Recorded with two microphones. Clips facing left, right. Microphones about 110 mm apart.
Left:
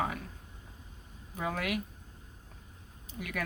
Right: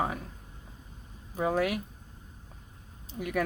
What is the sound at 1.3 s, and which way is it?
Speech, 35° right (ahead or behind).